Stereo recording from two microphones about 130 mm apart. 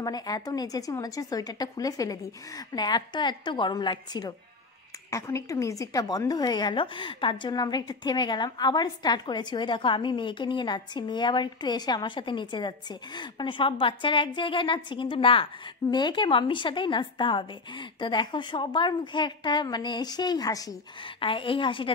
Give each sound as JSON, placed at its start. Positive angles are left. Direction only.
{"t": 0.0, "sound": "a woman's voice", "side_deg": 30}
{"t": 5.1, "sound": "a woman's voice", "side_deg": 25}
{"t": 21.2, "sound": "a woman's voice", "side_deg": 40}